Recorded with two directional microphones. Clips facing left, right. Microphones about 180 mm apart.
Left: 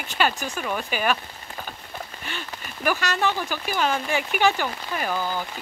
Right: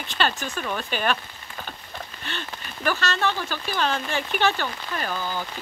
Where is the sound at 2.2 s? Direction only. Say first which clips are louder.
Even; 10° left (ahead or behind).